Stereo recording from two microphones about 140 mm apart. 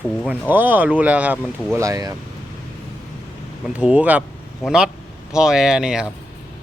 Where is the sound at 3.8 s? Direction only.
10° right (ahead or behind).